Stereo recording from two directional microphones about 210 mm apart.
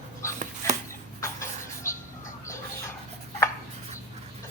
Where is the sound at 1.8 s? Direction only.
15° left (ahead or behind).